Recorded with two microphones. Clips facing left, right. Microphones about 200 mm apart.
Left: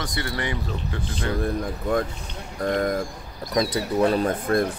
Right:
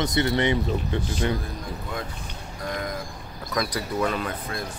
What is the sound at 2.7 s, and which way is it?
Speech, 55° left (ahead or behind).